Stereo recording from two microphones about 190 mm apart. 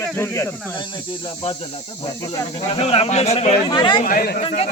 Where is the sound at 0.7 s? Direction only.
25° left (ahead or behind).